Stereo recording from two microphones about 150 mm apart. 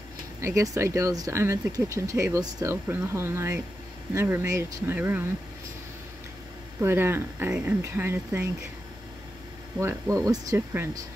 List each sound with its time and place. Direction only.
0.4 s speech: 20° right (ahead or behind)
6.8 s speech: 15° right (ahead or behind)
9.8 s speech: 20° right (ahead or behind)